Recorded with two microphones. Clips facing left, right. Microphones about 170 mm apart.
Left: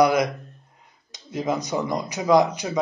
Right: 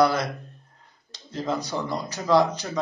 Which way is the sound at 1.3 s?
15° left (ahead or behind).